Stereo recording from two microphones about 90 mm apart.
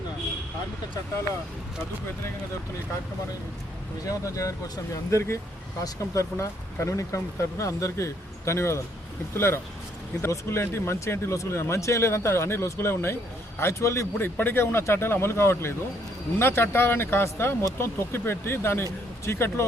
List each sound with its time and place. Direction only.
4.0 s speech: 40° left (ahead or behind)
5.8 s speech: 35° left (ahead or behind)